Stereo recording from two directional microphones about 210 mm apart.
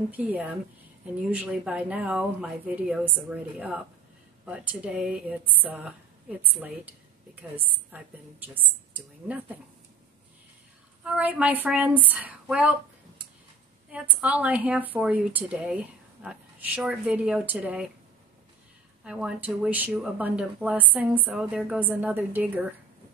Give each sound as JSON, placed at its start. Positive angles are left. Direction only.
{"t": 0.1, "sound": "a woman's voice", "side_deg": -5}
{"t": 11.1, "sound": "a woman's voice", "side_deg": -5}
{"t": 13.8, "sound": "a woman's voice", "side_deg": -5}
{"t": 19.0, "sound": "a woman's voice", "side_deg": -5}